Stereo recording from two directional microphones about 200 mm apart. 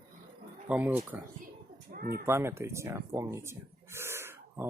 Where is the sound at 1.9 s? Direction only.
45° right (ahead or behind).